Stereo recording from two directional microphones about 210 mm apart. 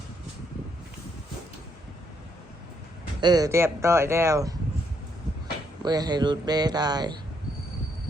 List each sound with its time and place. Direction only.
3.2 s speech: 20° right (ahead or behind)
5.8 s speech: 20° right (ahead or behind)